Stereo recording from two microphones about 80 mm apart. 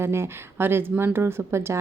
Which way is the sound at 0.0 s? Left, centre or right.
Right.